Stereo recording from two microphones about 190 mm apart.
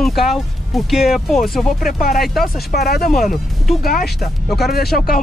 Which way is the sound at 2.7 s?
55° left (ahead or behind).